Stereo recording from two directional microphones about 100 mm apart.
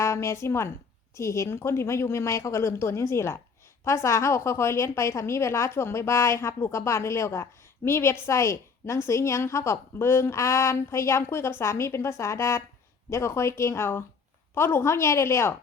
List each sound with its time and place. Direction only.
0.0 s a woman's voice: 30° left (ahead or behind)